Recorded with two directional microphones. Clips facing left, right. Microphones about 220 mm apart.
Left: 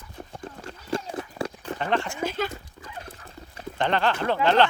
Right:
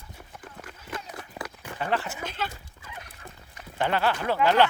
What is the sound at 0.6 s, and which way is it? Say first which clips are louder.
Clip-clop: left 9 dB; 30° left (ahead or behind).